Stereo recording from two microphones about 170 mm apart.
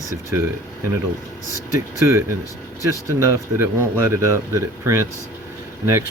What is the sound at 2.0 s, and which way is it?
Speech, 15° right (ahead or behind).